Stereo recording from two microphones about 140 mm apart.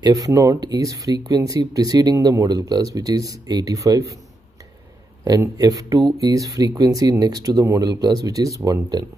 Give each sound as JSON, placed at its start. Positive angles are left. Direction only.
{"t": 0.0, "sound": "speech", "side_deg": -25}
{"t": 5.2, "sound": "speech", "side_deg": -25}